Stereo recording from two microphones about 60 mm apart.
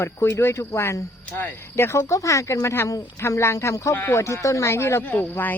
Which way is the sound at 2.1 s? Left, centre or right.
Left.